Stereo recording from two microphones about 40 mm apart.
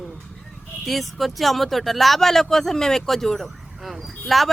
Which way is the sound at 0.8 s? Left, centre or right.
Centre.